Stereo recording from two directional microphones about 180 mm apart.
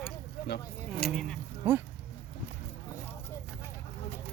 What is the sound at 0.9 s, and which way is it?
Speech, 5° left (ahead or behind).